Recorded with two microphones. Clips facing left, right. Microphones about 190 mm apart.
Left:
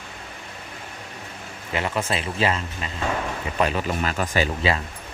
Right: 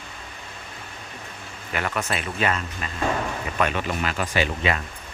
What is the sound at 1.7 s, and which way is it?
Speech, 25° left (ahead or behind).